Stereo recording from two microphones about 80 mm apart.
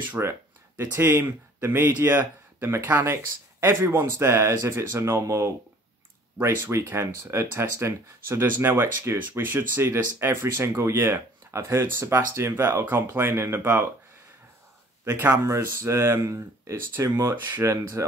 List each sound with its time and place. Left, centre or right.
0.2 s speech: right
15.4 s speech: right
17.3 s speech: right